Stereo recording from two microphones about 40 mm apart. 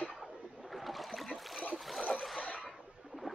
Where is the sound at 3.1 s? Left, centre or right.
Right.